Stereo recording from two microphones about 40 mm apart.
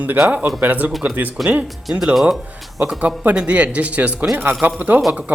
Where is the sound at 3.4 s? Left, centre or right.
Right.